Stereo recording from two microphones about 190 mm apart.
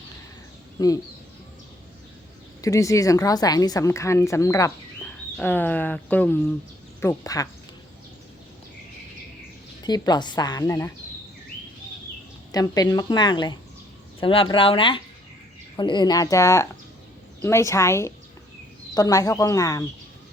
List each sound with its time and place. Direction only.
0.8 s a woman's voice: 20° left (ahead or behind)
2.6 s a woman's voice: 15° left (ahead or behind)
9.8 s a woman's voice: 20° left (ahead or behind)
12.5 s a woman's voice: 20° left (ahead or behind)